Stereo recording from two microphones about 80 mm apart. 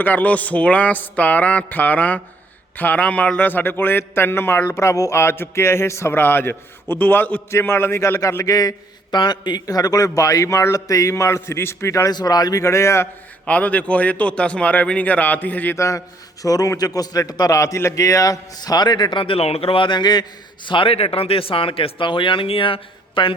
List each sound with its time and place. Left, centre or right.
0.0 s a man's voice: left
8.4 s a man's voice: left
9.1 s a man's voice: left
12.1 s a man's voice: left
13.4 s a man's voice: centre
15.8 s a man's voice: left
20.7 s a man's voice: left
21.5 s speech: left